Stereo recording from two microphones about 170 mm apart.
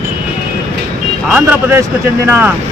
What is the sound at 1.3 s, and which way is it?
Speech, 10° right (ahead or behind).